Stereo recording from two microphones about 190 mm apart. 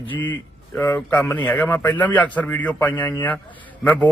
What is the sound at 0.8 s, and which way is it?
A man's voice, 10° left (ahead or behind).